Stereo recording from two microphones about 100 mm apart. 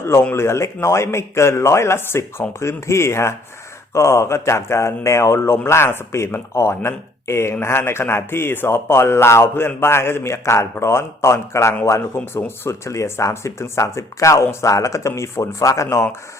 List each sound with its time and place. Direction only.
0.0 s speech: 25° left (ahead or behind)